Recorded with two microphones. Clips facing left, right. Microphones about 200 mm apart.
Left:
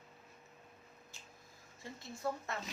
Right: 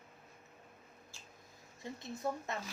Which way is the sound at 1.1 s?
20° left (ahead or behind).